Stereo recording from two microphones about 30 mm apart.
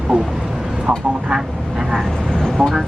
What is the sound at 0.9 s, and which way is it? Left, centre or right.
Speech, centre.